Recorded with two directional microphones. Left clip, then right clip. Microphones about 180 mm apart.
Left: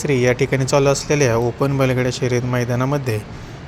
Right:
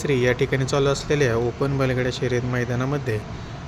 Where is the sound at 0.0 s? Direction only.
10° left (ahead or behind).